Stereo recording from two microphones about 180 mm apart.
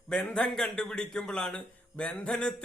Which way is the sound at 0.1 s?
5° left (ahead or behind).